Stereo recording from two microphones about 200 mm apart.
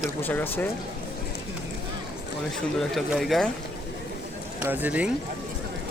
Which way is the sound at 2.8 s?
Centre (ahead or behind).